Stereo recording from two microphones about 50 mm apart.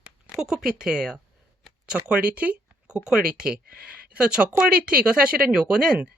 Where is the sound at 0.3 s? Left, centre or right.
Centre.